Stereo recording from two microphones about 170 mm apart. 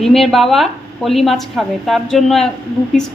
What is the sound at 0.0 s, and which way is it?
A woman's voice, centre (ahead or behind).